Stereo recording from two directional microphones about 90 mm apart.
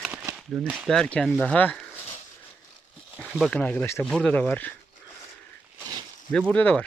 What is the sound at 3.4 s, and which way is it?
Speech, 15° left (ahead or behind).